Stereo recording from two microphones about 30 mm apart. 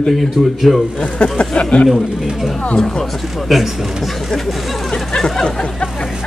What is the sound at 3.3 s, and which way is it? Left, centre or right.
Speech, centre.